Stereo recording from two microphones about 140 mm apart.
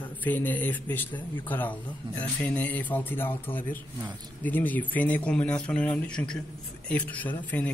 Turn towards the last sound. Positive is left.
turn(degrees=10)  # may be behind; listen again after turning